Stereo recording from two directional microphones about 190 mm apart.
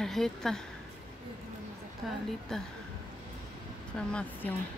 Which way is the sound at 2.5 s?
Centre (ahead or behind).